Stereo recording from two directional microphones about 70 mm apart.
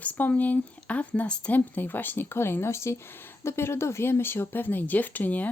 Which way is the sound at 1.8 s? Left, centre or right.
Left.